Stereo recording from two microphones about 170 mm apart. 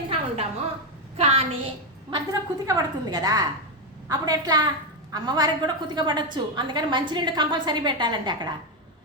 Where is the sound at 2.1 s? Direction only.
20° right (ahead or behind).